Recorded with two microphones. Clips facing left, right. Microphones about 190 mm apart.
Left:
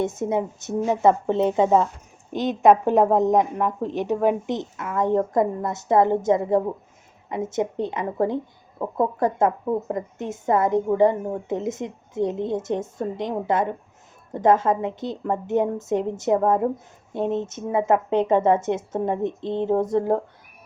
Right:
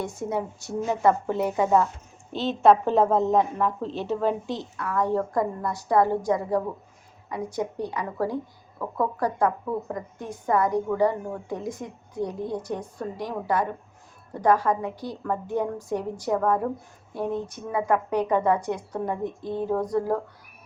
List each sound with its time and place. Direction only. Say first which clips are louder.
0.0 s a woman's voice: left 5 dB; 20° left (ahead or behind)